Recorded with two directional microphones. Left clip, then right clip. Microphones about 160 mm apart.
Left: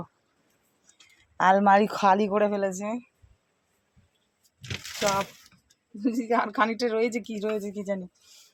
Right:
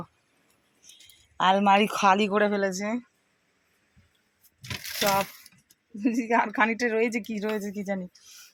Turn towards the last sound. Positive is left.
turn(degrees=-10)  # may be behind; listen again after turning